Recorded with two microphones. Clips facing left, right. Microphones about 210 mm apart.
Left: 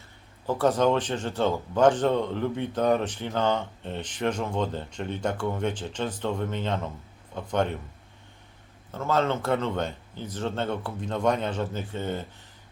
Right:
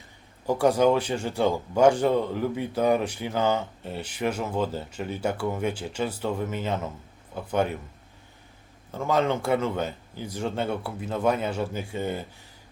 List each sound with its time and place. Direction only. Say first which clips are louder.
0.4 s a man's voice: right 2 dB; 15° right (ahead or behind)
8.9 s a man's voice: right 1 dB; 15° right (ahead or behind)